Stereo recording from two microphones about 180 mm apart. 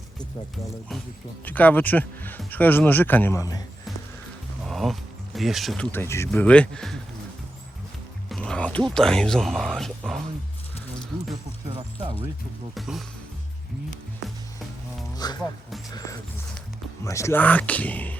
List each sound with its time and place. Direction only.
1.5 s speech: 10° left (ahead or behind)
4.6 s speech: centre (ahead or behind)
8.3 s speech: 5° left (ahead or behind)
12.7 s speech: centre (ahead or behind)
15.1 s music: 20° left (ahead or behind)
15.9 s speech: 20° left (ahead or behind)